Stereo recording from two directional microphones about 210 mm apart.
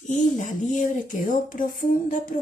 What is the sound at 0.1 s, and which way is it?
Speech, 35° left (ahead or behind).